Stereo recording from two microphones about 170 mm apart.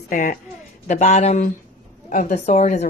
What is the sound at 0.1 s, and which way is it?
Speech, 50° left (ahead or behind).